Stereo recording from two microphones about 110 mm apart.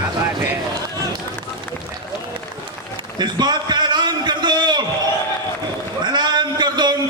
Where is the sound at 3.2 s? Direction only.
40° right (ahead or behind).